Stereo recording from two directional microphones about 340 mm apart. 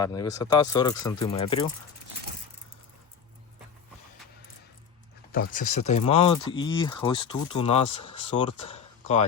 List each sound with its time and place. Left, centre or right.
0.0 s speech: centre
5.5 s speech: left